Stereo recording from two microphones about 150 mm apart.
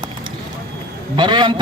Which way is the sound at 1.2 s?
30° right (ahead or behind).